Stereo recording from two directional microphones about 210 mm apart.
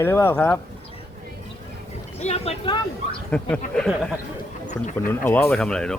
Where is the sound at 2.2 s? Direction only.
30° left (ahead or behind).